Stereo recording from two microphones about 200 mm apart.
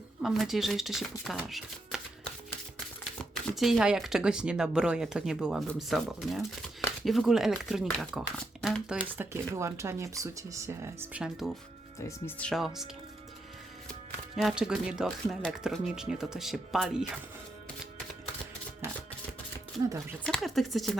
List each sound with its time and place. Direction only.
0.2 s speech: centre (ahead or behind)
3.5 s speech: centre (ahead or behind)
9.1 s speech: 15° right (ahead or behind)
11.9 s speech: 15° left (ahead or behind)
14.3 s speech: centre (ahead or behind)
20.2 s speech: centre (ahead or behind)